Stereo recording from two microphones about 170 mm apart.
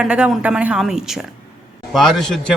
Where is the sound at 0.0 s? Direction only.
5° right (ahead or behind).